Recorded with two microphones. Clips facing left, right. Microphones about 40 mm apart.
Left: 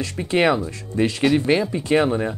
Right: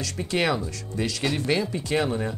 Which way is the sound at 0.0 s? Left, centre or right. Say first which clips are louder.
Left 6 dB; left.